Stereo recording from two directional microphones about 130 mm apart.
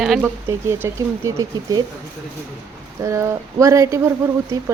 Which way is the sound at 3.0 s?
20° right (ahead or behind).